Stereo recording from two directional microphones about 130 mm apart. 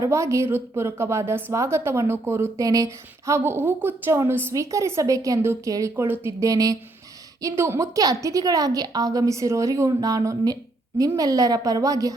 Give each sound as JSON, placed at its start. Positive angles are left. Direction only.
{"t": 0.0, "sound": "a woman's voice", "side_deg": -25}